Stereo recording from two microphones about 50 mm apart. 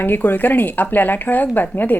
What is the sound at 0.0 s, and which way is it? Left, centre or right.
A woman's voice, left.